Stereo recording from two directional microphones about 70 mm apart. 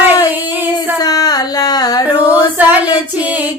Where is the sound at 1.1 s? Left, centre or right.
Left.